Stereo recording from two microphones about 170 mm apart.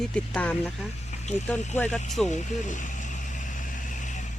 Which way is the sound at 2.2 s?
45° left (ahead or behind).